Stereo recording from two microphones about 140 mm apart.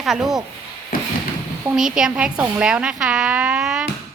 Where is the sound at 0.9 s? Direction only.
90° left.